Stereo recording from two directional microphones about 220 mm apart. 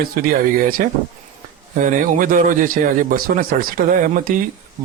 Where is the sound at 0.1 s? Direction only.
40° right (ahead or behind).